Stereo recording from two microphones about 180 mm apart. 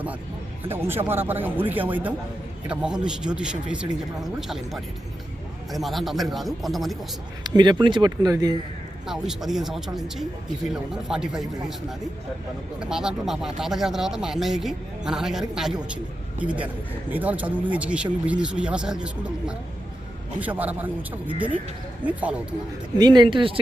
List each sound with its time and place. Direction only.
0.7 s speech: 10° right (ahead or behind)
7.4 s speech: 25° right (ahead or behind)
9.0 s speech: 5° right (ahead or behind)
12.8 s speech: 5° right (ahead or behind)
22.0 s speech: 10° right (ahead or behind)
23.0 s speech: 25° right (ahead or behind)